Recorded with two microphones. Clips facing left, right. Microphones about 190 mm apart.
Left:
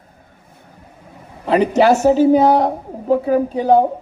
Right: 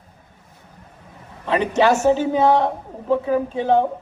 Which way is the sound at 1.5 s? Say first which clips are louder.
Left 4 dB; 35° left (ahead or behind).